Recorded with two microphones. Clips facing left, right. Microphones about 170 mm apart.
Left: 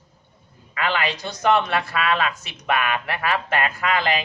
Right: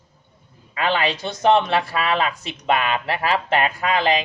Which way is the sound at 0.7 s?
25° right (ahead or behind).